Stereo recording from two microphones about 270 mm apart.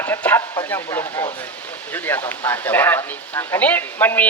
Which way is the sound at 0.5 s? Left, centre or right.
Centre.